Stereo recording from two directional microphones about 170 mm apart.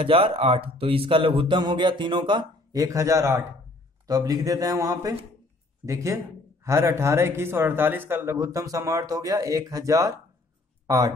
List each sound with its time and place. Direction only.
0.0 s speech: 35° right (ahead or behind)